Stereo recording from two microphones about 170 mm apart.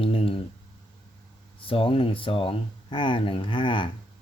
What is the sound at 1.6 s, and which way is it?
Speech, 30° left (ahead or behind).